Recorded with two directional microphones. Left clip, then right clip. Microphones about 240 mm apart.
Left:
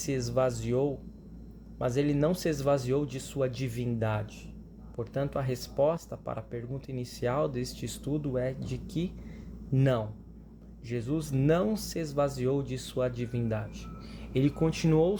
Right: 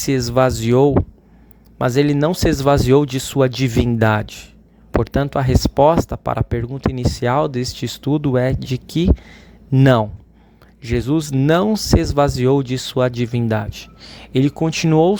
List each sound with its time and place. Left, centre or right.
0.0 s speech: right